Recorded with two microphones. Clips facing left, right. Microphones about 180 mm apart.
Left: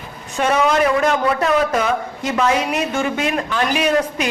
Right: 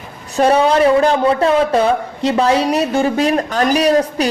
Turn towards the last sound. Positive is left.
turn(degrees=-35)  # may be behind; listen again after turning